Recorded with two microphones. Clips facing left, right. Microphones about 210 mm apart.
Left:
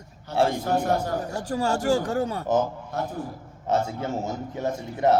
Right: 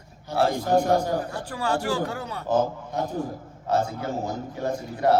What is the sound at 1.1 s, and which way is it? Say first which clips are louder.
Speech: left 3 dB; 45° left (ahead or behind).